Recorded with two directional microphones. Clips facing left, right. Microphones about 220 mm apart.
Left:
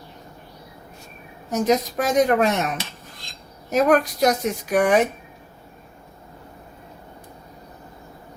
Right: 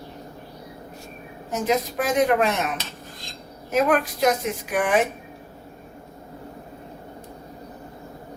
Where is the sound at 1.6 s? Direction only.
40° left (ahead or behind).